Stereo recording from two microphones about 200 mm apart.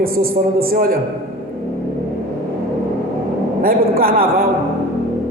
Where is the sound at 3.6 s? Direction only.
50° right (ahead or behind).